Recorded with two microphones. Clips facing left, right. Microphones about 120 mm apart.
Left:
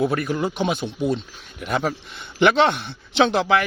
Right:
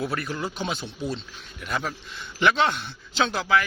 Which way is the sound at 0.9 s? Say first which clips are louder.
Left 8 dB; 55° left (ahead or behind).